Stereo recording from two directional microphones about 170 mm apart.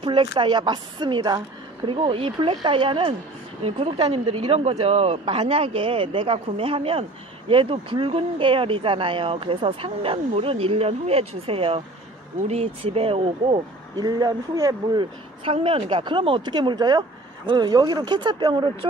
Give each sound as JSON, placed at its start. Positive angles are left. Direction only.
{"t": 0.0, "sound": "speech", "side_deg": -30}